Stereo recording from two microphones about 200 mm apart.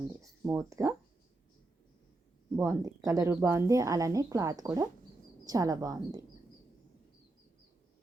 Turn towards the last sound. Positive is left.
turn(degrees=-20)  # may be behind; listen again after turning